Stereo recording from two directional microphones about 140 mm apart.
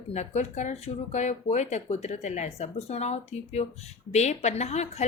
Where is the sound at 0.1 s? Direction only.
55° left (ahead or behind).